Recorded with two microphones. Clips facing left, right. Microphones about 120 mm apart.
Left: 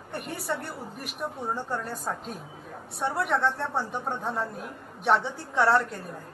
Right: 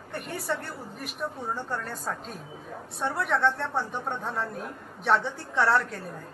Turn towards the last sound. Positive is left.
turn(degrees=15)  # may be behind; listen again after turning